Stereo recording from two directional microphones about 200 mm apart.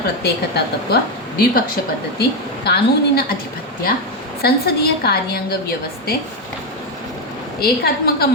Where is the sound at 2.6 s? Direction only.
55° left (ahead or behind).